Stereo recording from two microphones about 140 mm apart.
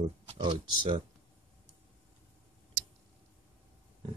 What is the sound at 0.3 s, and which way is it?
Speech, 35° right (ahead or behind).